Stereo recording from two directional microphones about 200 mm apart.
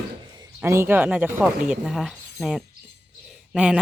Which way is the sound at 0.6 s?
10° right (ahead or behind).